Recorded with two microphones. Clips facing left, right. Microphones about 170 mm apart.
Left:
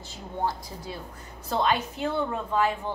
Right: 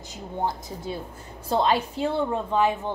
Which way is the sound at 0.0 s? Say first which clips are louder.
Right 1 dB; 15° right (ahead or behind).